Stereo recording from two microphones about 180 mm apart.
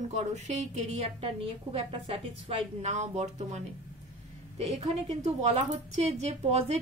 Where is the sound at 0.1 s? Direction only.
40° right (ahead or behind).